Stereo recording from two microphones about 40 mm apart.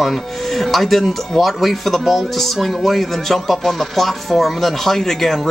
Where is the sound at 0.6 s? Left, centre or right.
Centre.